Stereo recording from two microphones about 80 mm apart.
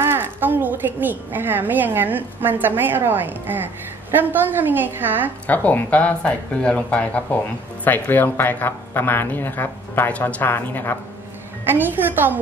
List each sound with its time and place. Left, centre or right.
0.0 s a woman's voice: right
5.5 s speech: left
11.6 s a woman's voice: right